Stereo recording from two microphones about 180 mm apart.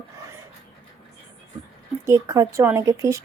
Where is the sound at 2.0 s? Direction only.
15° right (ahead or behind).